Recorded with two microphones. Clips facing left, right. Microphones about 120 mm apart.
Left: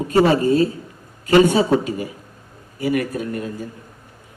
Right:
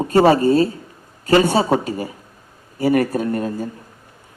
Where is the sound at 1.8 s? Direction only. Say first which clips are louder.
Even; 35° right (ahead or behind).